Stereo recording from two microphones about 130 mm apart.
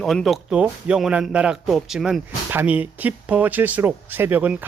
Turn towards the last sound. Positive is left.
turn(degrees=-15)  # may be behind; listen again after turning